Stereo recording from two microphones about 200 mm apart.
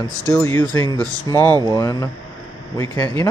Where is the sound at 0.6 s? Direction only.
20° right (ahead or behind).